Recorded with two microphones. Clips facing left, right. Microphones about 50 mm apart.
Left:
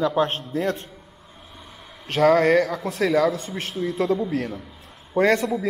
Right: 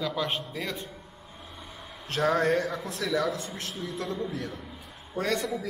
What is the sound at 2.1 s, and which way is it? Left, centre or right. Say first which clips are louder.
A man's voice: left 8 dB; left.